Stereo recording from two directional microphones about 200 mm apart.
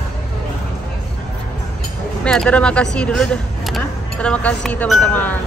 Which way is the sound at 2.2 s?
5° left (ahead or behind).